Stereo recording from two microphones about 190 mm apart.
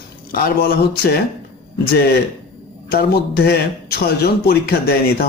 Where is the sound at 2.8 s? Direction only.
55° left (ahead or behind).